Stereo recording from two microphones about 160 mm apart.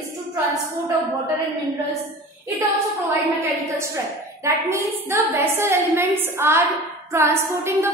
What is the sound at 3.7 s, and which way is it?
A woman's voice, 15° right (ahead or behind).